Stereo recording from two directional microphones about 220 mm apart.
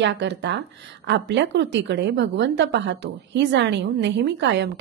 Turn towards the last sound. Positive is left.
turn(degrees=-55)  # may be behind; listen again after turning